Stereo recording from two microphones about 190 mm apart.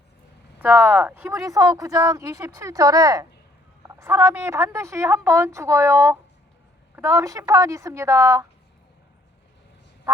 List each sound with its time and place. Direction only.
0.6 s speech: 10° right (ahead or behind)